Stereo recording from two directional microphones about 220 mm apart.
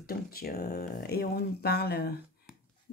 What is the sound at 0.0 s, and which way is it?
A woman's voice, 45° left (ahead or behind).